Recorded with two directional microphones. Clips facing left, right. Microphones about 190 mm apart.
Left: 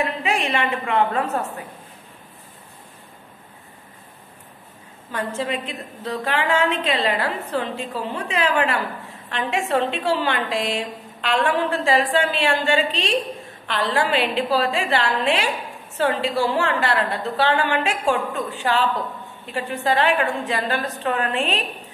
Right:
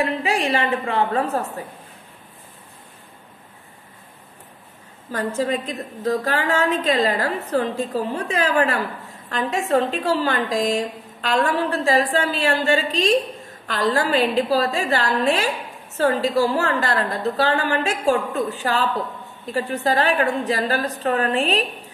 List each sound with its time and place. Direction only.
0.0 s a woman's voice: 35° right (ahead or behind)
5.1 s a woman's voice: 35° right (ahead or behind)